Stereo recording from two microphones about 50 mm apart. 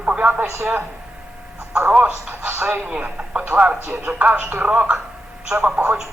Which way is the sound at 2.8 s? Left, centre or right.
Right.